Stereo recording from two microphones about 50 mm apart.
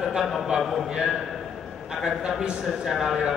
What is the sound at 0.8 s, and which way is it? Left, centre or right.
Speech, centre.